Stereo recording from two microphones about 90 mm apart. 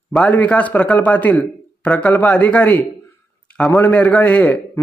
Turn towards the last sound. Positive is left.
turn(degrees=15)  # may be behind; listen again after turning